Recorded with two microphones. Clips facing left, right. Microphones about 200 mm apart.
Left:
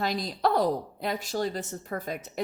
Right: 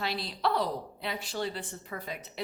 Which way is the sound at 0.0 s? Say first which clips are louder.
Left 4 dB; 45° left (ahead or behind).